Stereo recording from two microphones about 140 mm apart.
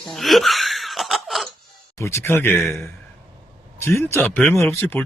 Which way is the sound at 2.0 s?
20° left (ahead or behind).